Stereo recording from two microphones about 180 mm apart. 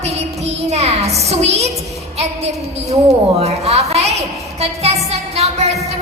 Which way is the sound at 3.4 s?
35° right (ahead or behind).